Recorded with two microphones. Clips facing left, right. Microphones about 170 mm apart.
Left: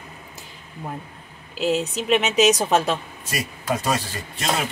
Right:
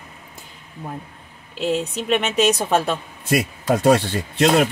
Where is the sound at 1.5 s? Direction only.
5° left (ahead or behind).